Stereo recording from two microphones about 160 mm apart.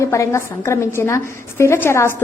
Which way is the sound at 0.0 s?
20° left (ahead or behind).